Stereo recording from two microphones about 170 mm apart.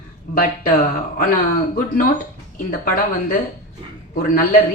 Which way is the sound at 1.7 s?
55° left (ahead or behind).